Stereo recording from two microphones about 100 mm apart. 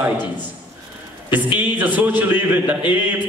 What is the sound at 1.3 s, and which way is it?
A man's voice, 15° right (ahead or behind).